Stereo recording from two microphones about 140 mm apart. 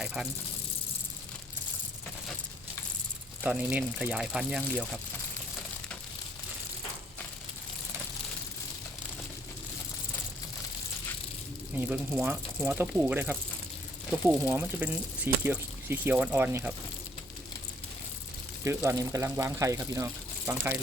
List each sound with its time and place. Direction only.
0.0 s speech: 5° right (ahead or behind)
3.4 s speech: 10° right (ahead or behind)
11.7 s speech: 10° right (ahead or behind)
18.6 s speech: 20° right (ahead or behind)